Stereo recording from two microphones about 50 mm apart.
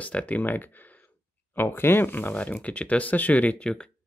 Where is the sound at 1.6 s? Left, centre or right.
Left.